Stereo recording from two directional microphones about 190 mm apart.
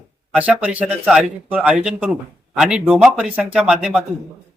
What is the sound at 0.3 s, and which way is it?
Speech, 5° right (ahead or behind).